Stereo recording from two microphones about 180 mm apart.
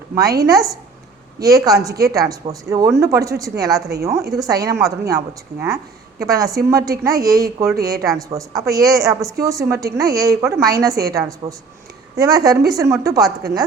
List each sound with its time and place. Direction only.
0.2 s a woman's voice: 20° right (ahead or behind)